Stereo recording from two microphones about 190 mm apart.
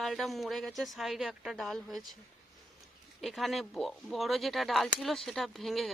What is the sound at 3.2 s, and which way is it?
Speech, centre (ahead or behind).